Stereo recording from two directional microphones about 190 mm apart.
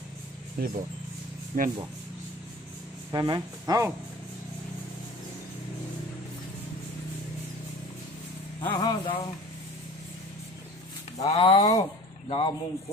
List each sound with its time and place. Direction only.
0.6 s speech: 50° right (ahead or behind)
3.1 s speech: 20° right (ahead or behind)
8.7 s a sound: 20° left (ahead or behind)
11.2 s speech: 30° left (ahead or behind)